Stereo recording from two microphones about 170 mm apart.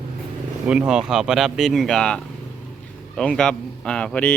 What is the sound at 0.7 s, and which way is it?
Speech, 5° right (ahead or behind).